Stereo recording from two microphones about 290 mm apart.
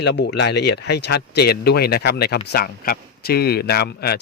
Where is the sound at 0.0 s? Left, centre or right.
Left.